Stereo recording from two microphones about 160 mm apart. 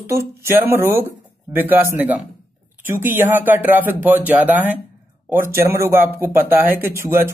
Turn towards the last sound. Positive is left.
turn(degrees=-15)  # may be behind; listen again after turning